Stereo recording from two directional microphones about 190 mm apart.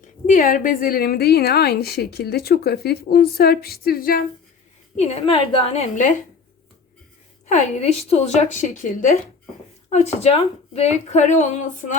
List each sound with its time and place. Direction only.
0.3 s a woman's voice: 50° left (ahead or behind)
4.9 s a woman's voice: 35° left (ahead or behind)
7.4 s a woman's voice: 35° left (ahead or behind)
9.9 s a woman's voice: 35° left (ahead or behind)